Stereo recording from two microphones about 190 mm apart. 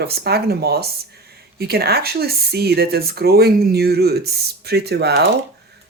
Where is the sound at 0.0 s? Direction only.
55° right (ahead or behind).